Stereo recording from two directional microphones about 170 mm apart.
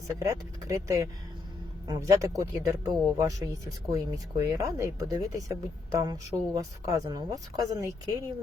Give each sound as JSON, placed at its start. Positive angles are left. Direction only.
{"t": 0.2, "sound": "speech", "side_deg": -20}